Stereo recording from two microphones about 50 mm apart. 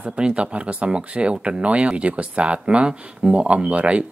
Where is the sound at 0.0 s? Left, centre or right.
Right.